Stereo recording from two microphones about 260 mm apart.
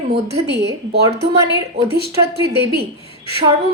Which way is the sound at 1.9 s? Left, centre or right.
Right.